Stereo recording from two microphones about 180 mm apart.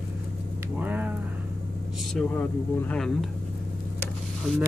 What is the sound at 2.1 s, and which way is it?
Speech, 5° left (ahead or behind).